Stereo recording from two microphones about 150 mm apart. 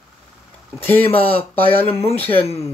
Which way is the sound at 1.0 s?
40° left (ahead or behind).